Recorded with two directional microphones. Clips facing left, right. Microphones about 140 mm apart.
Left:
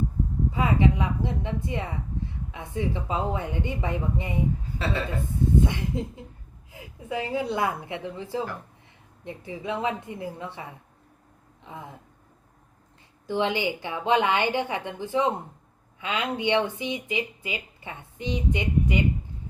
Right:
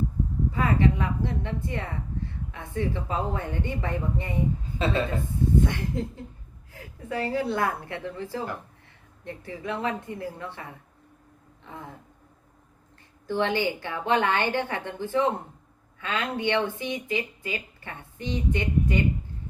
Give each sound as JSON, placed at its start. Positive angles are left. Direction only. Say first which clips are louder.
{"t": 0.5, "sound": "speech", "louder": "left 1 dB", "side_deg": 15}
{"t": 4.8, "sound": "a woman's voice", "louder": "right 4 dB", "side_deg": -20}
{"t": 5.6, "sound": "speech", "louder": "even", "side_deg": 15}
{"t": 11.6, "sound": "a sound", "louder": "left 1 dB", "side_deg": 15}
{"t": 13.2, "sound": "speech", "louder": "even", "side_deg": 15}